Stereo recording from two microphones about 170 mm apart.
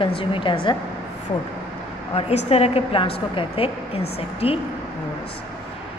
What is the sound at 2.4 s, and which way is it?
A woman's voice, 35° left (ahead or behind).